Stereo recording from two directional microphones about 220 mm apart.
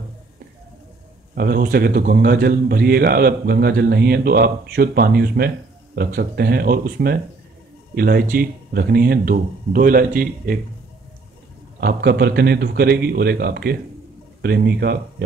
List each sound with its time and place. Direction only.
1.3 s a man's voice: 45° right (ahead or behind)
11.8 s a man's voice: 45° right (ahead or behind)